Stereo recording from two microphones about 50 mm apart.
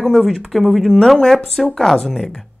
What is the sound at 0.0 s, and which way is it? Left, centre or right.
Speech, centre.